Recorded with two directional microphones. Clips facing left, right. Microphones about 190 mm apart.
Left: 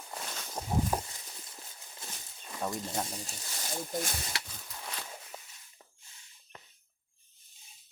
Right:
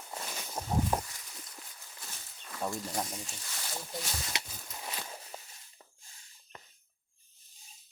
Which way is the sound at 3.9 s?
50° left (ahead or behind).